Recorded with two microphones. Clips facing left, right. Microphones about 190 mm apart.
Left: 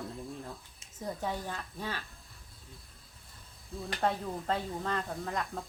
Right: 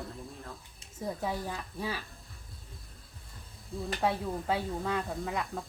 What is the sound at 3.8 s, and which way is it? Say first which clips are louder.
Speech: right 1 dB; 5° right (ahead or behind).